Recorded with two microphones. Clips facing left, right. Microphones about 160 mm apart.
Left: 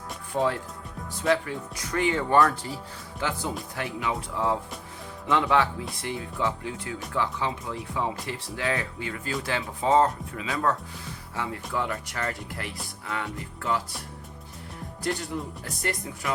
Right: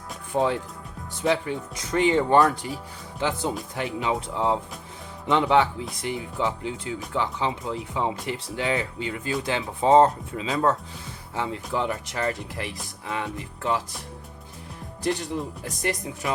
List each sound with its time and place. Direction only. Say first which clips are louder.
0.3 s speech: right 2 dB; 20° right (ahead or behind)
15.6 s speech: right 3 dB; 20° right (ahead or behind)